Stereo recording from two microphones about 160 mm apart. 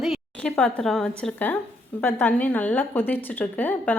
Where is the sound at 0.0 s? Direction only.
Centre (ahead or behind).